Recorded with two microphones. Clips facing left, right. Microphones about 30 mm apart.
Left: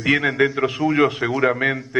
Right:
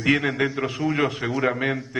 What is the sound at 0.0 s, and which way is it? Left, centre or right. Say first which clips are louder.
A man's voice: left 3 dB; centre.